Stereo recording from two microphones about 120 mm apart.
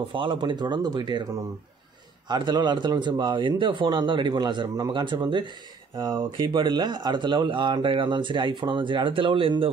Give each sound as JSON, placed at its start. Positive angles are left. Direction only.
{"t": 0.1, "sound": "speech", "side_deg": -45}